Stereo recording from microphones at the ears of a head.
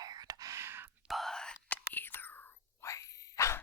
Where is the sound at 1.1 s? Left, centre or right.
Centre.